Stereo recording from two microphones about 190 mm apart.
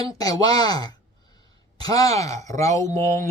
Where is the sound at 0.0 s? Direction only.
20° left (ahead or behind).